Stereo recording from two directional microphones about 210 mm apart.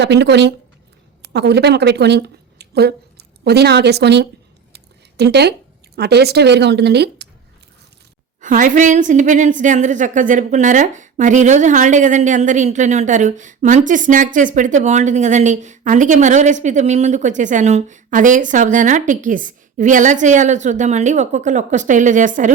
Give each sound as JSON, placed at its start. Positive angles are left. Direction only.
{"t": 0.0, "sound": "speech", "side_deg": -55}
{"t": 4.7, "sound": "a sound", "side_deg": -50}
{"t": 6.0, "sound": "speech", "side_deg": -50}
{"t": 8.4, "sound": "a woman's voice", "side_deg": -40}